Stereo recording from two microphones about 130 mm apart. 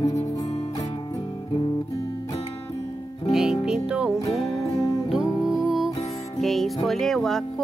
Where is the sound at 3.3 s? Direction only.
5° right (ahead or behind).